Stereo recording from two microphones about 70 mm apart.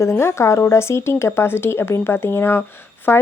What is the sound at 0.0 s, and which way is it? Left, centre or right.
Speech, left.